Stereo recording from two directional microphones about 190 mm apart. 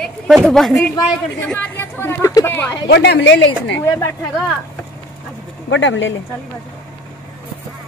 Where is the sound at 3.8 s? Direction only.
15° left (ahead or behind).